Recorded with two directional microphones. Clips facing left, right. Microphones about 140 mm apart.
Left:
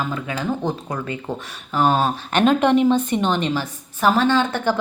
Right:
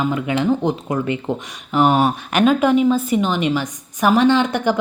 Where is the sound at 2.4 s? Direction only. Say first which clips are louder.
Right 1 dB; 5° right (ahead or behind).